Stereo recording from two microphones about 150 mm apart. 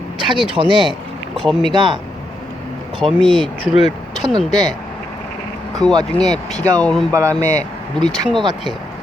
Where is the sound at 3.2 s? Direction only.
5° left (ahead or behind).